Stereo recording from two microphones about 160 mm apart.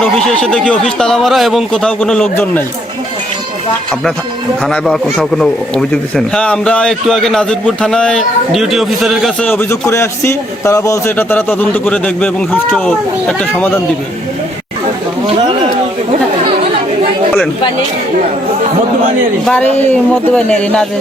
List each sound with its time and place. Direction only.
0.0 s speech: 5° left (ahead or behind)
4.6 s speech: 5° left (ahead or behind)
9.5 s a man's voice: 15° left (ahead or behind)
19.5 s a man's voice: 10° left (ahead or behind)